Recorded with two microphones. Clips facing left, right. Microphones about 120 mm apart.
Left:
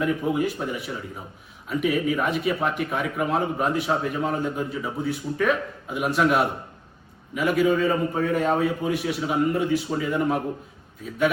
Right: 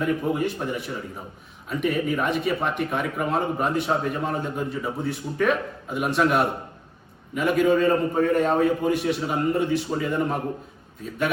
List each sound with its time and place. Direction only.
0.0 s speech: centre (ahead or behind)